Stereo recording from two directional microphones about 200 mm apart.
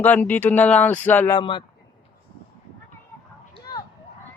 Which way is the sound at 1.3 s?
25° left (ahead or behind).